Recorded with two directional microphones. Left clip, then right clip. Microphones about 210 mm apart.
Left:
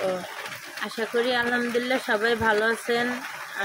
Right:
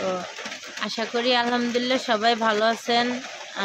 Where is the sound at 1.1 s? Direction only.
20° right (ahead or behind).